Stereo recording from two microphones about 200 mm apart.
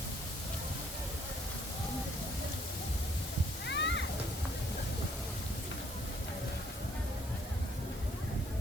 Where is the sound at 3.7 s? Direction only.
60° left (ahead or behind).